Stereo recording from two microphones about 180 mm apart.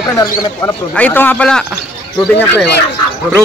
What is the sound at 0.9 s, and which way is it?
Speech, 10° left (ahead or behind).